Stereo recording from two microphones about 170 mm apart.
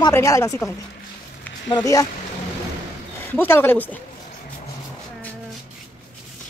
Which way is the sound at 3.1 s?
15° left (ahead or behind).